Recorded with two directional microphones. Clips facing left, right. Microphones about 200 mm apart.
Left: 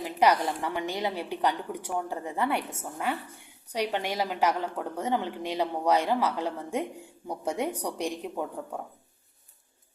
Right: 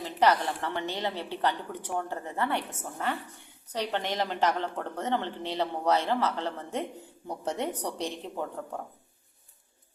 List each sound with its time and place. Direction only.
0.0 s a woman's voice: 10° left (ahead or behind)